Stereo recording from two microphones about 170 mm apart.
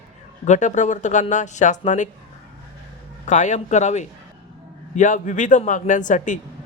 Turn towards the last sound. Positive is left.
turn(degrees=50)  # may be behind; listen again after turning